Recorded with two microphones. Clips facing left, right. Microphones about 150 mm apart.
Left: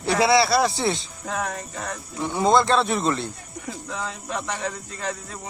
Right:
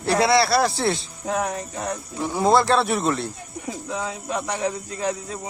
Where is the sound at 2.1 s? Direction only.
Centre (ahead or behind).